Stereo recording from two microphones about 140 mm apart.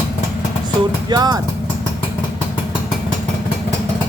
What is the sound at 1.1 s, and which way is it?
Speech, 30° right (ahead or behind).